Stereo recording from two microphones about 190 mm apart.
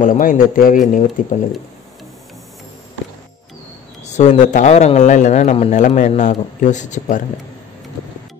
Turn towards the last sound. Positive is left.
turn(degrees=40)  # may be behind; listen again after turning